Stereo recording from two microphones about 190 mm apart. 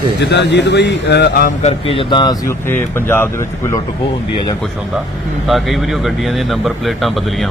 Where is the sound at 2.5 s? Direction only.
10° left (ahead or behind).